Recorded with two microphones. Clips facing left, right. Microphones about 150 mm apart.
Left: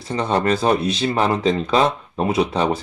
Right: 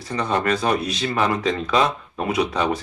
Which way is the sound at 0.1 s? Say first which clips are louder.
Left 3 dB; 30° left (ahead or behind).